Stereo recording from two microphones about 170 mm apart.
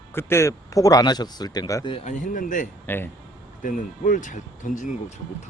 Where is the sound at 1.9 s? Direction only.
45° left (ahead or behind).